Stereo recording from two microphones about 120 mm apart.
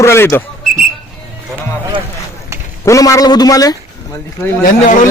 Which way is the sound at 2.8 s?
25° left (ahead or behind).